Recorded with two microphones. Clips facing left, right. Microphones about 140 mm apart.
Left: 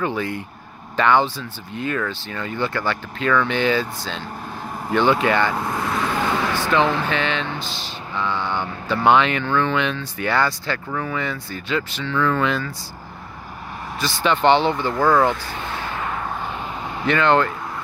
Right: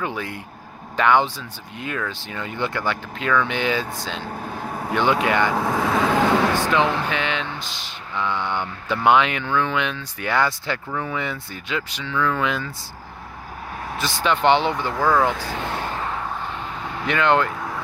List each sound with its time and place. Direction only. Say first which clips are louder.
0.0 s speech: left 4 dB; 5° right (ahead or behind)
4.6 s vehicle: right 1 dB; 60° right (ahead or behind)
4.9 s speech: left 2 dB; 5° right (ahead or behind)
5.6 s vehicle: right 3 dB; 90° right
6.7 s speech: left 1 dB; 5° right (ahead or behind)
7.5 s speech: left 4 dB; 30° left (ahead or behind)
8.5 s speech: left 2 dB; centre (ahead or behind)
11.1 s speech: left 1 dB; 15° right (ahead or behind)
14.2 s speech: left 2 dB; 5° right (ahead or behind)
15.3 s speech: right 3 dB; 90° right
15.8 s a sound: even; 35° right (ahead or behind)
17.0 s speech: left 2 dB; 5° right (ahead or behind)